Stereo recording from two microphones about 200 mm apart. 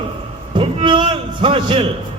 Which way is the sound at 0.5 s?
25° right (ahead or behind).